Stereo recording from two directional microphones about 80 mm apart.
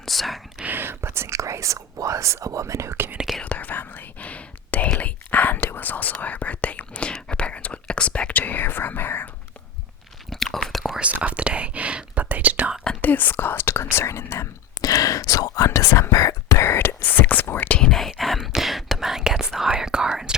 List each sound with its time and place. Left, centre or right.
0.0 s whispering: centre
0.6 s speech: right
3.2 s speech: centre
3.4 s whispering: centre
10.2 s whispering: centre
11.0 s whispering: centre
13.0 s speech: left
14.8 s speech: left
17.4 s whispering: left
17.7 s whispering: centre